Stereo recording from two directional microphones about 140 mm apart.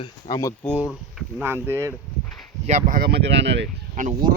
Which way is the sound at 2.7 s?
65° right (ahead or behind).